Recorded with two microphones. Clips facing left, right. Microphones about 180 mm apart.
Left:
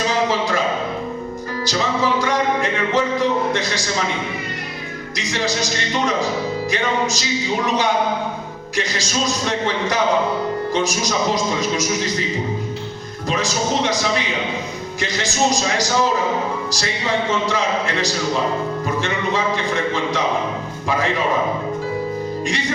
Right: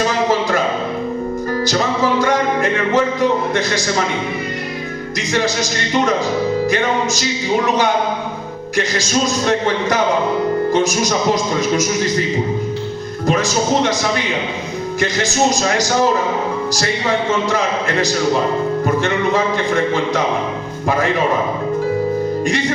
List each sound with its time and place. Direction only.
1.6 s music: 50° right (ahead or behind)
6.7 s a man's voice: 50° right (ahead or behind)
8.7 s a man's voice: 50° right (ahead or behind)
13.2 s a man's voice: 50° right (ahead or behind)
15.0 s a man's voice: 45° right (ahead or behind)
17.5 s a man's voice: 45° right (ahead or behind)
18.9 s a sound: 50° right (ahead or behind)